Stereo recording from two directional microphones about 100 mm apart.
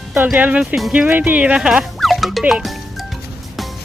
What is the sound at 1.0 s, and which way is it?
Speech, 15° right (ahead or behind).